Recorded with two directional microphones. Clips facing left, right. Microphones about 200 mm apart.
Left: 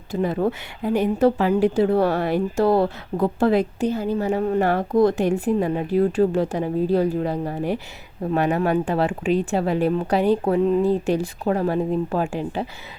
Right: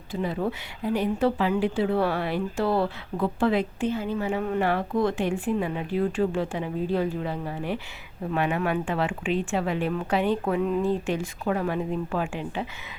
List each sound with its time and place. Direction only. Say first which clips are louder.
0.1 s speech: left 6 dB; 45° left (ahead or behind)